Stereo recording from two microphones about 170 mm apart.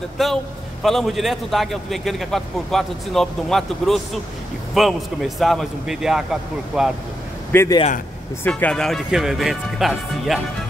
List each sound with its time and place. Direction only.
0.2 s a man's voice: centre (ahead or behind)
7.5 s a man's voice: 15° left (ahead or behind); by 10.4 s centre (ahead or behind)